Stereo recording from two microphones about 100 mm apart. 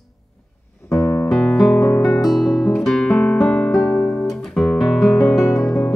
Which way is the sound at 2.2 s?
Centre (ahead or behind).